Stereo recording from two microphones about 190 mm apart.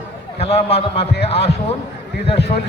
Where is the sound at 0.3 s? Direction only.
35° left (ahead or behind).